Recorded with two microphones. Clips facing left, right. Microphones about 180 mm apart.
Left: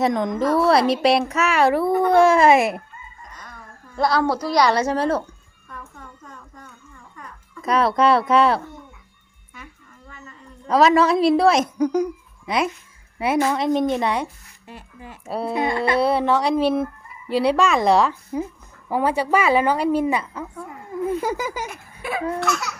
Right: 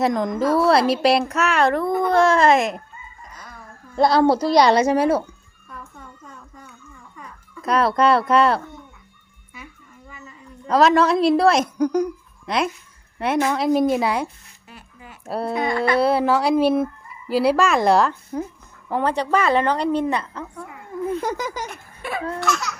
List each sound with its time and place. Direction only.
0.0 s speech: centre (ahead or behind)
3.2 s dog: 5° right (ahead or behind)
3.9 s a woman's voice: 25° right (ahead or behind)
5.6 s music: 5° right (ahead or behind)
7.2 s a child's voice: centre (ahead or behind)
10.1 s a woman's voice: centre (ahead or behind)
15.5 s speech: 25° left (ahead or behind)
16.0 s a woman's voice: centre (ahead or behind)